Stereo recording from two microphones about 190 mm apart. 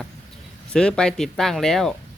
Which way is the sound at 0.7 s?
5° left (ahead or behind).